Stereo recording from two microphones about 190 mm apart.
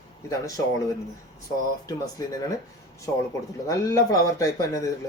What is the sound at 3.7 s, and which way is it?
Speech, 15° left (ahead or behind).